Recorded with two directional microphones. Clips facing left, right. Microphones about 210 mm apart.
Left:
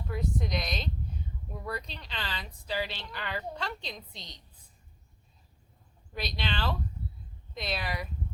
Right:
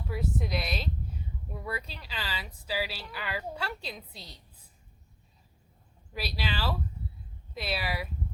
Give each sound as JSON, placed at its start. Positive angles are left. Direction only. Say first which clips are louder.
{"t": 0.1, "sound": "a woman's voice", "louder": "even", "side_deg": -5}
{"t": 6.1, "sound": "a woman's voice", "louder": "even", "side_deg": -5}